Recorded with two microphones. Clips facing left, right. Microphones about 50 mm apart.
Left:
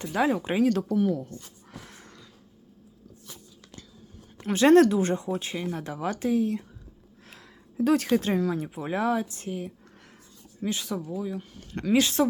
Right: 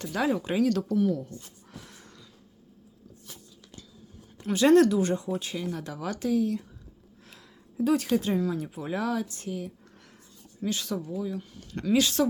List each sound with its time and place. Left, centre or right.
0.0 s speech: left
1.3 s a sound: left
4.4 s speech: left
7.3 s a sound: left
8.5 s speech: left
10.6 s speech: centre
11.3 s speech: left